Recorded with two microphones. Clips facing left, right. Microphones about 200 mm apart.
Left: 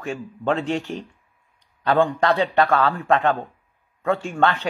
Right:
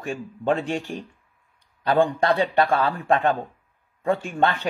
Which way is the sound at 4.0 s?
15° right (ahead or behind).